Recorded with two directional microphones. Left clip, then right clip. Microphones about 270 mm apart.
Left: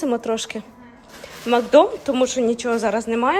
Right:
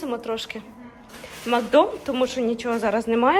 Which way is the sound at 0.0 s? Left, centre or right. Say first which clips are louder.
Left 6 dB; left.